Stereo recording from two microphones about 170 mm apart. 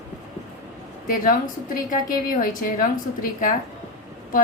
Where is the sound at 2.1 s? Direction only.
50° left (ahead or behind).